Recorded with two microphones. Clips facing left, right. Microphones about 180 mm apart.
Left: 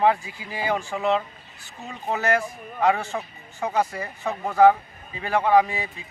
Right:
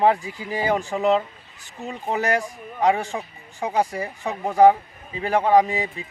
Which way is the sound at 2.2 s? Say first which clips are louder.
Left 1 dB; 15° right (ahead or behind).